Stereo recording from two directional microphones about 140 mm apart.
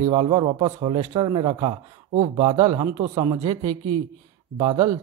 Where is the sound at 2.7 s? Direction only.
30° right (ahead or behind).